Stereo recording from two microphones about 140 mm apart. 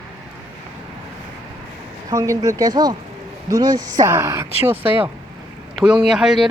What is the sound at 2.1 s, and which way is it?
Speech, 25° right (ahead or behind).